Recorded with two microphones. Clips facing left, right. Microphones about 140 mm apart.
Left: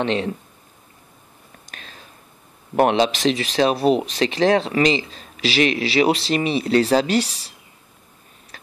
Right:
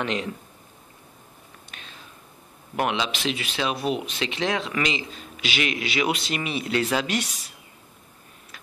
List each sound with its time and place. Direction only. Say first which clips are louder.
0.0 s speech: left 6 dB; 30° left (ahead or behind)
1.7 s whispering: left 4 dB; 40° left (ahead or behind)
2.7 s speech: left 9 dB; 40° left (ahead or behind)